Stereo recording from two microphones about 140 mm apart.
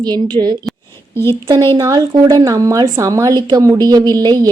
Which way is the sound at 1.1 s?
15° left (ahead or behind).